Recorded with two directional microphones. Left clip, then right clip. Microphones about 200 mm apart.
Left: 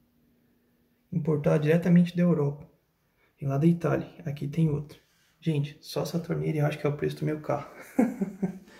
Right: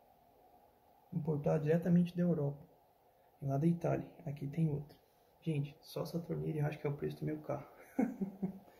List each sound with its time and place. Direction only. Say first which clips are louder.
1.2 s speech: left 10 dB; centre (ahead or behind)
3.3 s speech: left 9 dB; 5° right (ahead or behind)